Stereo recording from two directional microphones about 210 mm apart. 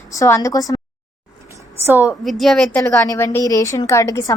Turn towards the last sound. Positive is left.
turn(degrees=15)  # may be behind; listen again after turning